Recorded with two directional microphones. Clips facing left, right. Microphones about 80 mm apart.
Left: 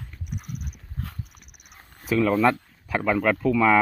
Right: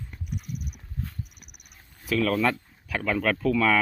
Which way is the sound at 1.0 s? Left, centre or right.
Left.